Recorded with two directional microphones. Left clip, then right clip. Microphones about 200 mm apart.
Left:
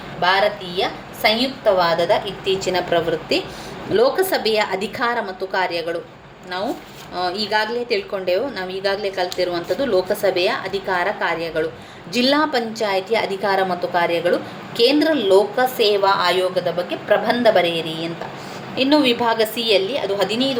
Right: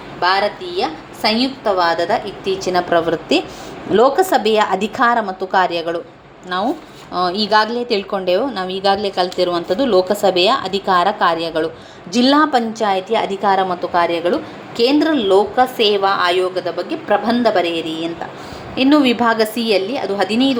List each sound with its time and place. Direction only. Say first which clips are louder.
0.2 s a woman's voice: right 1 dB; 25° right (ahead or behind)
7.1 s a woman's voice: right 6 dB; 20° right (ahead or behind)